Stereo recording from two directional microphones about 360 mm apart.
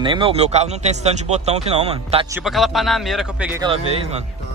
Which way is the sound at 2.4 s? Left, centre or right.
Centre.